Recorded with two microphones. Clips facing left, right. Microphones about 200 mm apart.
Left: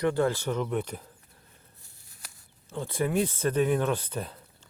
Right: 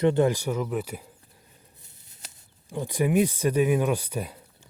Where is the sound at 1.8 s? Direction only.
20° right (ahead or behind).